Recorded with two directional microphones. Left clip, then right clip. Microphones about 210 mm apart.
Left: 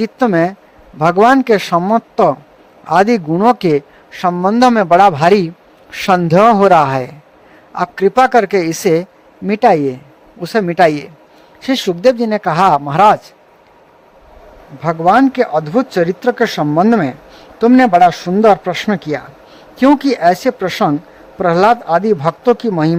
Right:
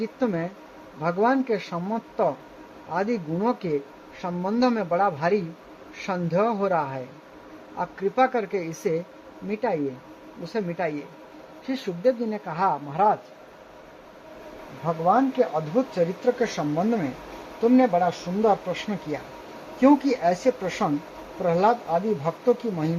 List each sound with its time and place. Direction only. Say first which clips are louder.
0.0 s a man's voice: left 14 dB; 55° left (ahead or behind)
14.8 s speech: left 11 dB; 60° left (ahead or behind)
19.8 s speech: left 9 dB; 40° left (ahead or behind)